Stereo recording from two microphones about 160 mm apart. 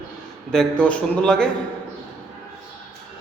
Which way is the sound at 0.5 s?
5° left (ahead or behind).